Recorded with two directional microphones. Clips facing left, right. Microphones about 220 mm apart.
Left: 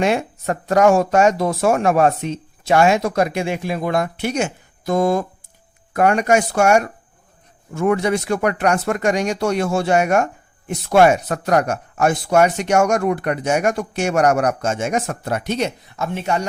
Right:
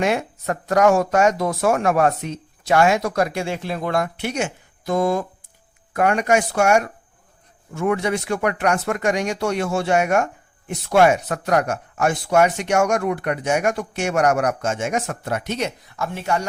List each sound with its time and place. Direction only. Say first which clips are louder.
0.0 s speech: left 2 dB; 30° left (ahead or behind); by 4.0 s 10° left (ahead or behind)
4.2 s speech: left 3 dB; 40° left (ahead or behind); by 16.5 s 20° left (ahead or behind)